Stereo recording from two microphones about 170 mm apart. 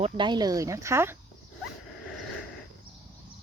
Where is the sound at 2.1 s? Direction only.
Centre (ahead or behind).